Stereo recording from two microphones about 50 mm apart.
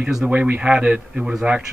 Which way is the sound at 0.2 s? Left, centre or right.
Right.